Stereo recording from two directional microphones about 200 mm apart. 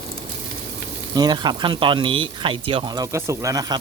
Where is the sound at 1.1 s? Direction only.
20° right (ahead or behind).